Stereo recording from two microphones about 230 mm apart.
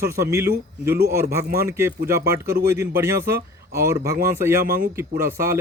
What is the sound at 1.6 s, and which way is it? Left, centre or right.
Speech, centre.